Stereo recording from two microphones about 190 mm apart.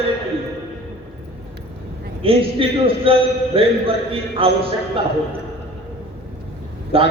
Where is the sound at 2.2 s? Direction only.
30° right (ahead or behind).